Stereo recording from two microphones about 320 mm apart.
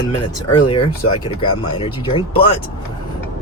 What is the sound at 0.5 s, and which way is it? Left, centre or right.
Speech, centre.